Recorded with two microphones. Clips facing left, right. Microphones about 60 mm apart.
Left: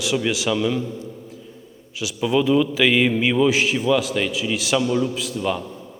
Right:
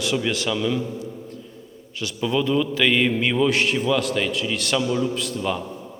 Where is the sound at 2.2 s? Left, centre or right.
Centre.